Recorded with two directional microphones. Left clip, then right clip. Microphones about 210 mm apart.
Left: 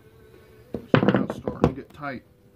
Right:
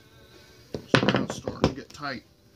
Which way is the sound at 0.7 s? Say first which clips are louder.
Left 2 dB; 35° left (ahead or behind).